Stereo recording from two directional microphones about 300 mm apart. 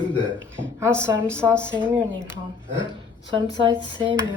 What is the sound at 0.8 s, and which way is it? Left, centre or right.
Speech, centre.